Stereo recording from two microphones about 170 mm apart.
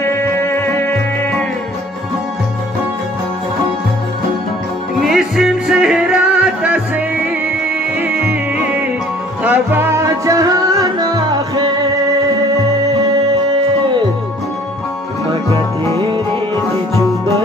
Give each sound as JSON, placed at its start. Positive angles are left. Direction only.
{"t": 0.0, "sound": "music", "side_deg": 15}
{"t": 5.0, "sound": "music", "side_deg": 0}
{"t": 8.0, "sound": "music", "side_deg": -10}